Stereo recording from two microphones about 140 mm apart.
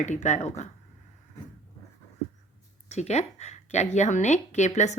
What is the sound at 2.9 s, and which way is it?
Speech, 55° left (ahead or behind).